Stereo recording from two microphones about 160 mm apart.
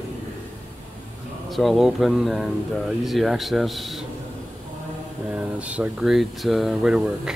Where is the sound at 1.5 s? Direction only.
Centre (ahead or behind).